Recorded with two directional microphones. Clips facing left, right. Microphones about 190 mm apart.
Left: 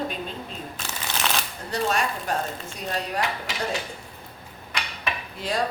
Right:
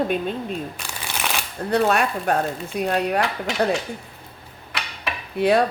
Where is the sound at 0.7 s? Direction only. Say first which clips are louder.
Even; 10° right (ahead or behind).